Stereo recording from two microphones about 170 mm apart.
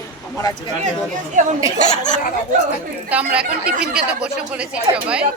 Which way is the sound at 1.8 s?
45° left (ahead or behind).